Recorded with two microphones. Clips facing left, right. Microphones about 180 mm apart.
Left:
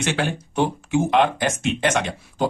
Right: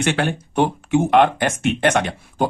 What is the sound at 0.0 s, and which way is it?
Speech, 55° right (ahead or behind).